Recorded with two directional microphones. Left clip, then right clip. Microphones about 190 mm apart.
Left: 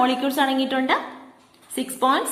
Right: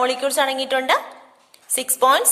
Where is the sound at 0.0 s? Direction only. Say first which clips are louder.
Right 1 dB; 40° right (ahead or behind).